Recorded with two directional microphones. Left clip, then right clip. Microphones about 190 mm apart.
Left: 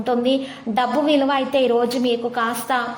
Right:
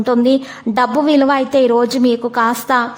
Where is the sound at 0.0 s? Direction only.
40° right (ahead or behind).